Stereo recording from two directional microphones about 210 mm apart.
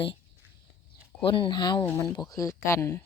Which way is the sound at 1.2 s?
25° left (ahead or behind).